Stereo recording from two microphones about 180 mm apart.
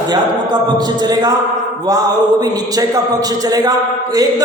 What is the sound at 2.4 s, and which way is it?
A man's voice, 20° right (ahead or behind).